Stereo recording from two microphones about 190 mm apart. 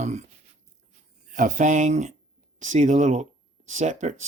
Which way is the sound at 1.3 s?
45° right (ahead or behind).